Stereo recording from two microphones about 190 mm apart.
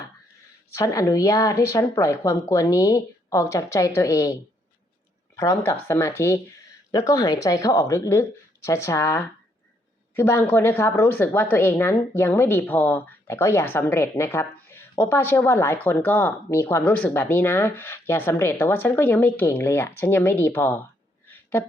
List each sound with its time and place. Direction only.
0.7 s a woman's voice: 15° left (ahead or behind)
5.4 s a woman's voice: 15° left (ahead or behind)
21.2 s a sound: 10° left (ahead or behind)